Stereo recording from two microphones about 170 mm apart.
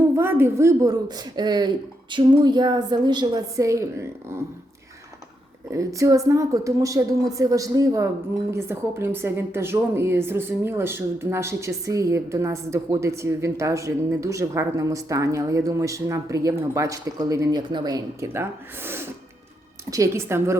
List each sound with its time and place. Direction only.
0.2 s speech: 15° right (ahead or behind)
5.7 s a woman's voice: 20° right (ahead or behind)